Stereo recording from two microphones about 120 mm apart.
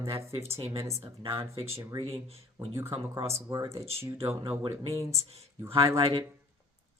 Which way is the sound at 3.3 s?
30° right (ahead or behind).